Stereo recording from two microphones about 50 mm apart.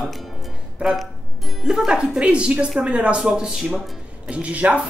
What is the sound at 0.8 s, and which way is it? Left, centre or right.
Speech, right.